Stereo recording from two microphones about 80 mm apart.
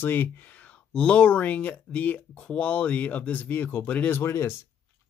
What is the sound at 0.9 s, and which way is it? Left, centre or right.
Speech, centre.